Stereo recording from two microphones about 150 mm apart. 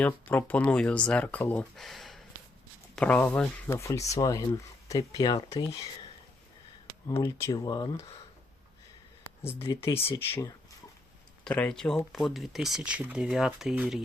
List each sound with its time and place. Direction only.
0.0 s speech: 10° left (ahead or behind); by 5.8 s 30° left (ahead or behind)
7.2 s speech: 15° left (ahead or behind)
9.4 s speech: 15° left (ahead or behind)
11.4 s speech: 10° left (ahead or behind)